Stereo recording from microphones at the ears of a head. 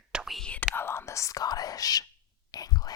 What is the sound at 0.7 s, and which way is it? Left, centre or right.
Whispering, left.